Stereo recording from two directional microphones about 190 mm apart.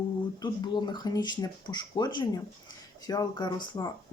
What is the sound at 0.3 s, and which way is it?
Speech, 20° left (ahead or behind).